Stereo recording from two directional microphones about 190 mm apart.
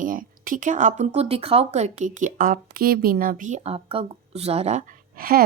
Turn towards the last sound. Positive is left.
turn(degrees=-50)  # may be behind; listen again after turning